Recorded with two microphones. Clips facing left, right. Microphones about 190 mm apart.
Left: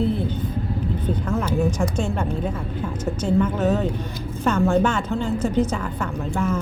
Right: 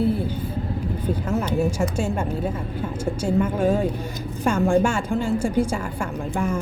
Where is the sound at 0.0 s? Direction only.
10° right (ahead or behind).